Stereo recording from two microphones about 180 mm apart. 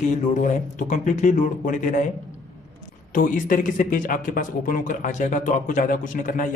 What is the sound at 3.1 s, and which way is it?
Speech, 45° left (ahead or behind).